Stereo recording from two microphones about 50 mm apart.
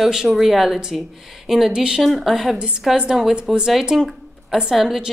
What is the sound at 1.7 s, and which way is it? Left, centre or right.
Speech, centre.